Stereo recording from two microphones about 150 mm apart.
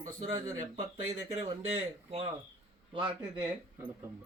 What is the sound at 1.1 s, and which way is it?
Speech, 50° right (ahead or behind).